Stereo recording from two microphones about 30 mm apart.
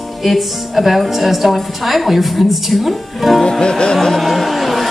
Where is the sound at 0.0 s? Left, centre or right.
Centre.